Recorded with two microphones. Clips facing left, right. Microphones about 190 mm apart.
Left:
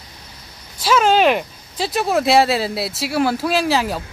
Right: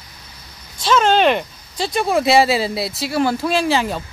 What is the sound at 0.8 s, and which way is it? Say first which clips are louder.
Speech: even; 5° left (ahead or behind).